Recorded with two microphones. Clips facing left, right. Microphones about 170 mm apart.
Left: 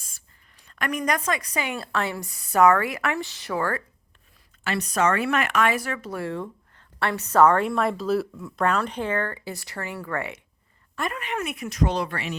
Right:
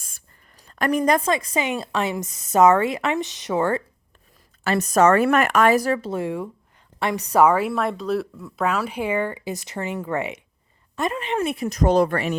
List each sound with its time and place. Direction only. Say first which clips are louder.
0.7 s a woman's voice: right 7 dB; 35° right (ahead or behind)
4.6 s a woman's voice: right 6 dB; 45° right (ahead or behind)